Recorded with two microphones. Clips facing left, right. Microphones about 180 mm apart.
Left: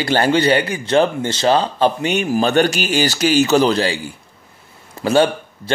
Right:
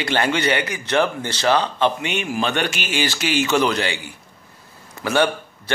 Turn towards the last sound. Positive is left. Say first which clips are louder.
# left 4 dB
turn(degrees=30)  # may be behind; listen again after turning